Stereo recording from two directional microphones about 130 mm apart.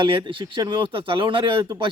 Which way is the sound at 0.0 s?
40° right (ahead or behind).